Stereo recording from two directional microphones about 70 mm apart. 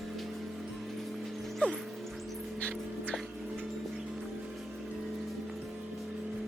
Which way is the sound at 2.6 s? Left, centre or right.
Centre.